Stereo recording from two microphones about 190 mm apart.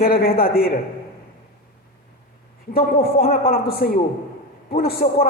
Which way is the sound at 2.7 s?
50° left (ahead or behind).